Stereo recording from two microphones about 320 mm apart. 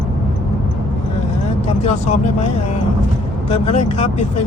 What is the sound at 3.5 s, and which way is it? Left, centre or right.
Speech, centre.